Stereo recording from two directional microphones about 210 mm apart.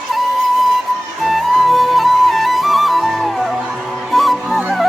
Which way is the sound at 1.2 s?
Centre (ahead or behind).